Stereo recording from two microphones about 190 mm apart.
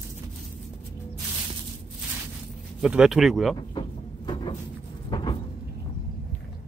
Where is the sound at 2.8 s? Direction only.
5° right (ahead or behind).